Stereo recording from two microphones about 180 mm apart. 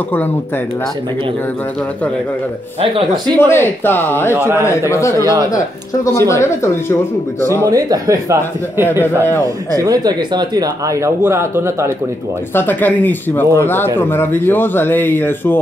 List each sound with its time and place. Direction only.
2.8 s speech: 30° right (ahead or behind)
3.3 s speech: 15° left (ahead or behind)
4.4 s speech: 10° right (ahead or behind)
4.6 s speech: 15° left (ahead or behind)
7.4 s speech: 20° right (ahead or behind)
12.5 s speech: 10° left (ahead or behind)